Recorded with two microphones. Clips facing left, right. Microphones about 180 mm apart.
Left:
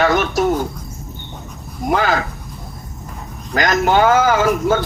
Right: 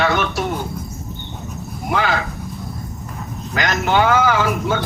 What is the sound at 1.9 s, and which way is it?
Speech, 40° left (ahead or behind).